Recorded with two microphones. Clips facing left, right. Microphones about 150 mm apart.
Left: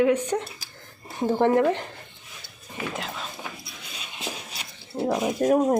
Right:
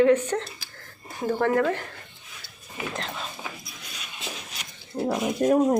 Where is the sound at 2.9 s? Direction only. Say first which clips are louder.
Even; 5° left (ahead or behind).